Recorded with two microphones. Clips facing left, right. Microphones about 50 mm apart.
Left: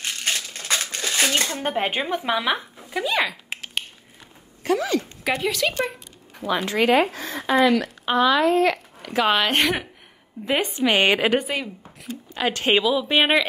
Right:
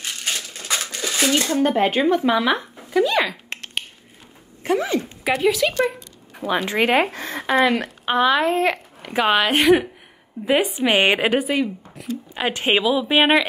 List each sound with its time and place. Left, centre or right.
0.2 s a sound: left
1.6 s speech: centre
4.6 s a sound: right
5.2 s a woman's voice: centre
6.3 s speech: centre
6.8 s speech: right
9.2 s a woman's voice: centre
11.3 s a woman's voice: centre
12.3 s speech: centre